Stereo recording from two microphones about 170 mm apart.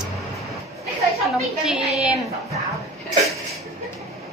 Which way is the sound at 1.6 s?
5° right (ahead or behind).